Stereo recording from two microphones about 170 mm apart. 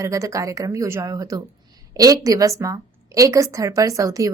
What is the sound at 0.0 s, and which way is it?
A woman's voice, 20° right (ahead or behind).